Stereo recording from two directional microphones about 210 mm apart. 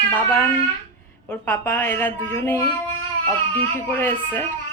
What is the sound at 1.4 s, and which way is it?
A woman's voice, 5° left (ahead or behind).